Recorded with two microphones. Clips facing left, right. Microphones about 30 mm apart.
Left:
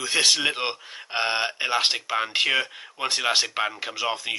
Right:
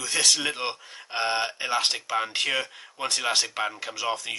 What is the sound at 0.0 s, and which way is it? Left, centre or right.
Speech, left.